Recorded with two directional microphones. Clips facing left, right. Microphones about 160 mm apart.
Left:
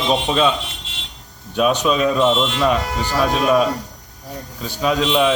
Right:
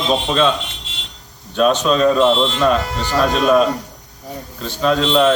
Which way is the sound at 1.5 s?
10° left (ahead or behind).